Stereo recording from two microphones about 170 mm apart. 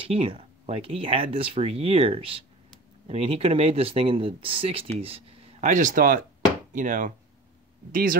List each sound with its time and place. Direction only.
0.0 s speech: 30° right (ahead or behind); by 8.2 s 55° right (ahead or behind)